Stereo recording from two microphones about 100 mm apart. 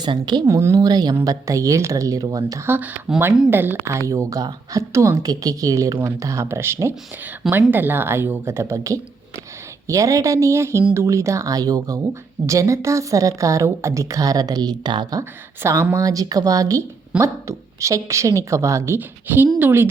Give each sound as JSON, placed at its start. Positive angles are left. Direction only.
{"t": 0.0, "sound": "speech", "side_deg": -50}
{"t": 0.4, "sound": "a woman's voice", "side_deg": -30}
{"t": 2.6, "sound": "a woman's voice", "side_deg": -20}
{"t": 15.2, "sound": "a woman's voice", "side_deg": -30}
{"t": 18.9, "sound": "speech", "side_deg": -20}